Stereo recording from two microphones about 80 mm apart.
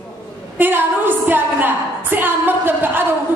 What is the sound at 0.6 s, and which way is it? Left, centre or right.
A woman's voice, right.